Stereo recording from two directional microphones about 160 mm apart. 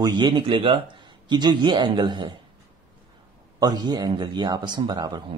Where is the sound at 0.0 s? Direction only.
30° right (ahead or behind).